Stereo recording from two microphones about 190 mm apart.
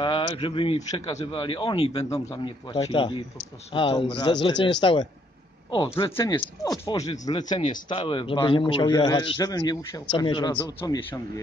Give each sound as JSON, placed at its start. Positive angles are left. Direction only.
{"t": 0.0, "sound": "a man's voice", "side_deg": 25}
{"t": 6.1, "sound": "speech", "side_deg": 20}
{"t": 7.4, "sound": "speech", "side_deg": 40}
{"t": 8.0, "sound": "a man's voice", "side_deg": 25}